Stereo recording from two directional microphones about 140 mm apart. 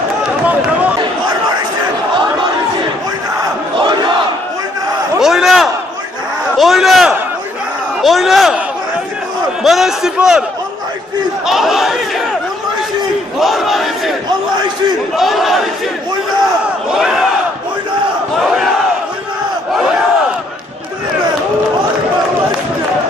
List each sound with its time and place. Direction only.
3.7 s crowd: 35° right (ahead or behind)
5.2 s a sound: 5° right (ahead or behind)
9.6 s a man's voice: centre (ahead or behind)
11.4 s speech: 5° right (ahead or behind)
13.4 s battle cry: centre (ahead or behind)
15.1 s battle cry: centre (ahead or behind)
16.9 s battle cry: 5° right (ahead or behind)
19.7 s battle cry: 5° right (ahead or behind)